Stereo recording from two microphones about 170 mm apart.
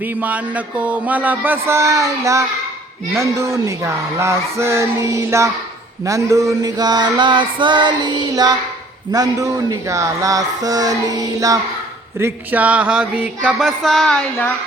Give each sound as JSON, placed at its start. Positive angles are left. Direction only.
{"t": 0.0, "sound": "a sound", "side_deg": -10}
{"t": 6.1, "sound": "music", "side_deg": -20}
{"t": 12.2, "sound": "music", "side_deg": -10}